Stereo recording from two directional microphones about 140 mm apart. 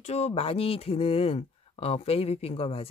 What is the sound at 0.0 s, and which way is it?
Speech, 50° left (ahead or behind).